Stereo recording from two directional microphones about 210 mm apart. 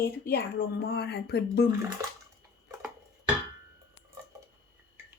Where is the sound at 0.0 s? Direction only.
45° left (ahead or behind).